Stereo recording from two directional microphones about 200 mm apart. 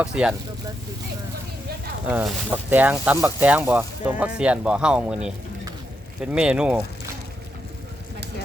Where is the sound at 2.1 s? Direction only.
5° right (ahead or behind).